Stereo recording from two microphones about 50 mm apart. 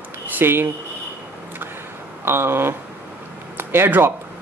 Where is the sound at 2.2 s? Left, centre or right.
Right.